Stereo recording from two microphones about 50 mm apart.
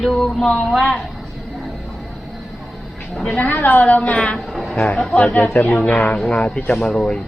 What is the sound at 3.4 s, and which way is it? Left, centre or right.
Speech, left.